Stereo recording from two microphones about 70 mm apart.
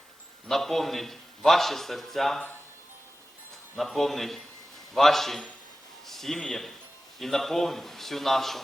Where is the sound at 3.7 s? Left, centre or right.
Centre.